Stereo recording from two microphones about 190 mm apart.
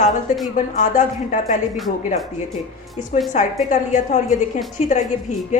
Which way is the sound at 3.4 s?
40° left (ahead or behind).